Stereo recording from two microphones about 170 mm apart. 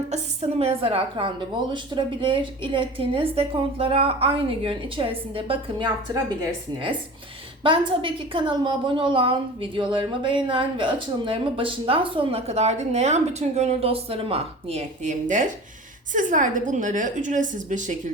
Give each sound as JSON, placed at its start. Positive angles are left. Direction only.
{"t": 0.6, "sound": "a woman's voice", "side_deg": -35}
{"t": 7.6, "sound": "a woman's voice", "side_deg": -30}